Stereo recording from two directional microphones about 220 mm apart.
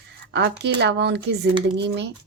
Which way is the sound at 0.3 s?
50° right (ahead or behind).